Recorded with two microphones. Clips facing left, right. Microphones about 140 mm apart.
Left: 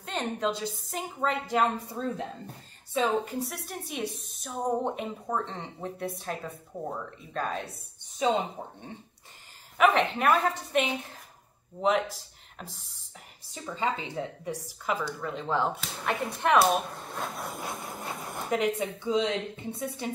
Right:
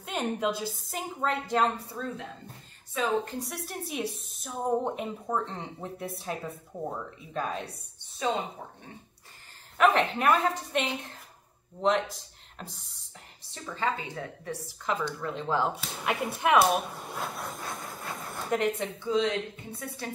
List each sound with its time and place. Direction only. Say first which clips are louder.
0.0 s a woman's voice: right 1 dB; 10° right (ahead or behind)
2.0 s a woman's voice: left 4 dB; 25° left (ahead or behind)
3.3 s a woman's voice: left 2 dB; centre (ahead or behind)
8.2 s speech: left 3 dB; 20° left (ahead or behind)
9.8 s a woman's voice: even; centre (ahead or behind)
13.5 s a woman's voice: even; 15° left (ahead or behind); by 17.5 s 5° right (ahead or behind)
17.5 s dog: left 2 dB; 15° left (ahead or behind)
19.7 s a woman's voice: left 4 dB; 25° left (ahead or behind)